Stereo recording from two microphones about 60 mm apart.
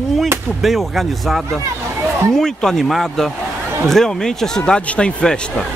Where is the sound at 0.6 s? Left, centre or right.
Centre.